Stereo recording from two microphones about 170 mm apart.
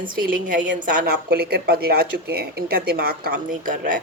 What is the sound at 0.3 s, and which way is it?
Speech, 50° right (ahead or behind).